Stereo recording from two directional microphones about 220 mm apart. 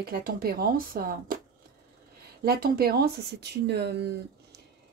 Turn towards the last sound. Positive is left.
turn(degrees=-50)  # may be behind; listen again after turning